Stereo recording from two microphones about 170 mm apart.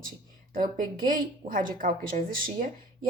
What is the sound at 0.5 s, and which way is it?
A woman's voice, 50° right (ahead or behind).